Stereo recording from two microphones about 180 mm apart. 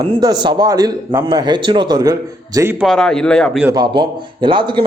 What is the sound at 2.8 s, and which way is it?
Speech, centre (ahead or behind).